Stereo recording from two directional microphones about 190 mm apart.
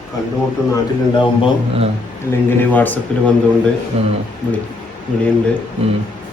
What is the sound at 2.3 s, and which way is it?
Speech, 10° left (ahead or behind).